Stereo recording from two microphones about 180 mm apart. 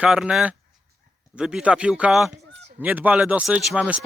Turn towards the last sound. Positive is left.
turn(degrees=-5)  # may be behind; listen again after turning